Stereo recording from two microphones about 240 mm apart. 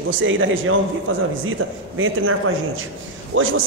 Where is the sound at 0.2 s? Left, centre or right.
Right.